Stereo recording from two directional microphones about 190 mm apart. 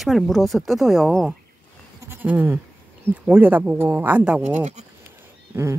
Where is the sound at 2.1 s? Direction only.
10° right (ahead or behind).